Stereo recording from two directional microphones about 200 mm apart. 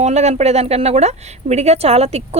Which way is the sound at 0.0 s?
35° right (ahead or behind).